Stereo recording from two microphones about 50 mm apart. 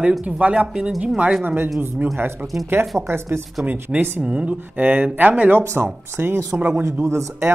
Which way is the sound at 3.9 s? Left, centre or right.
Centre.